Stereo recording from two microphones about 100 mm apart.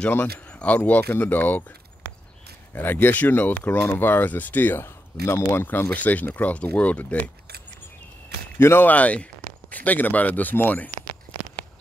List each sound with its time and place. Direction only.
0.0 s speech: 15° left (ahead or behind)
2.7 s speech: 20° left (ahead or behind)
8.5 s speech: 25° left (ahead or behind)